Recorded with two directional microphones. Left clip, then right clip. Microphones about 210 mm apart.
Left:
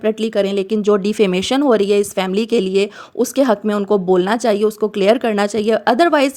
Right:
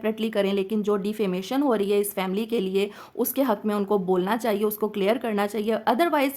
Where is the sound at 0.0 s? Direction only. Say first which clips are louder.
Left 8 dB; 20° left (ahead or behind).